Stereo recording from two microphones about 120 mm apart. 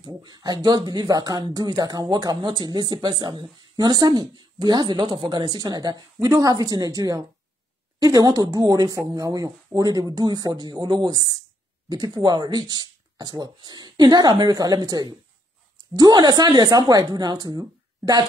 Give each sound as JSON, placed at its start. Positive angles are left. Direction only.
{"t": 0.0, "sound": "speech", "side_deg": -35}